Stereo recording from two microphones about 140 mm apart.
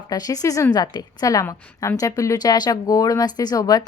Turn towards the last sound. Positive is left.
turn(degrees=25)  # may be behind; listen again after turning